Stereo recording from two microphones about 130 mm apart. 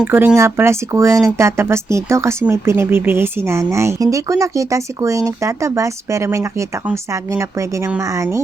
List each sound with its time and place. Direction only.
0.0 s speech: 15° right (ahead or behind)